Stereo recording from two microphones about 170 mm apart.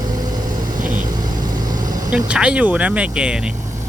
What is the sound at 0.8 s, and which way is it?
Vehicle, 50° right (ahead or behind).